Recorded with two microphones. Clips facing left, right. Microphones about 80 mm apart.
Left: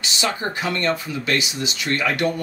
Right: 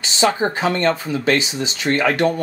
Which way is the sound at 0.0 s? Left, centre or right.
Right.